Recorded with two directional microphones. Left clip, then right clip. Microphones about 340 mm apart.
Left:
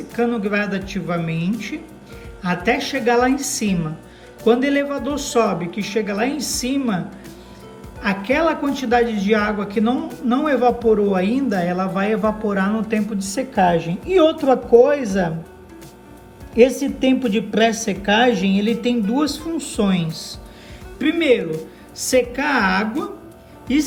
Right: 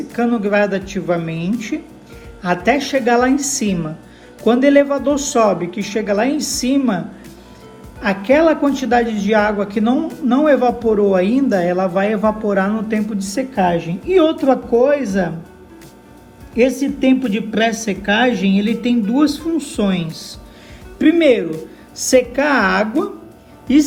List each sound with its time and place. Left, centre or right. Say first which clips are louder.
0.1 s a man's voice: right 3 dB; centre
1.3 s speech: right 2 dB; left
1.5 s a man's voice: right 5 dB; centre
8.0 s a man's voice: right 5 dB; centre
16.6 s a woman's voice: left 1 dB; centre